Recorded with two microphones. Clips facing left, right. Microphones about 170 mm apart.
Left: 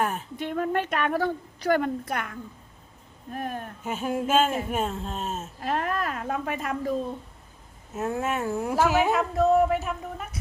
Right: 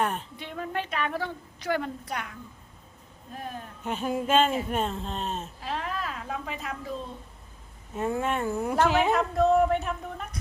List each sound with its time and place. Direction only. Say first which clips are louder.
0.0 s a woman's voice: left 1 dB; 5° left (ahead or behind)
0.3 s a woman's voice: left 7 dB; 50° left (ahead or behind)
1.8 s a woman's voice: left 5 dB; 55° left (ahead or behind)
3.3 s a woman's voice: left 5 dB; 60° left (ahead or behind)
3.8 s speech: even; 5° left (ahead or behind)
5.5 s a woman's voice: left 5 dB; 55° left (ahead or behind)
7.9 s speech: even; 5° left (ahead or behind)